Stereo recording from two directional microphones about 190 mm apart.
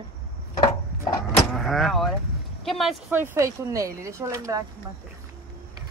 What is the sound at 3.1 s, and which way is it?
Speech, 15° right (ahead or behind).